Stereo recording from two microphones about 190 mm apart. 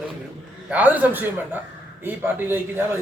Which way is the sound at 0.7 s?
10° right (ahead or behind).